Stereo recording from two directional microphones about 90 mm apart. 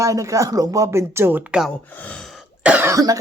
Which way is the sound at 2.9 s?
40° right (ahead or behind).